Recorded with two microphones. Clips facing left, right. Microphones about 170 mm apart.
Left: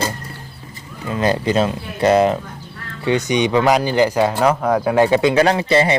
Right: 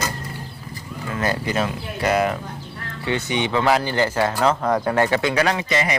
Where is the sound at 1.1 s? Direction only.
20° left (ahead or behind).